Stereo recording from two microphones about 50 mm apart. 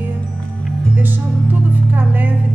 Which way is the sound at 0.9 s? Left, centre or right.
Right.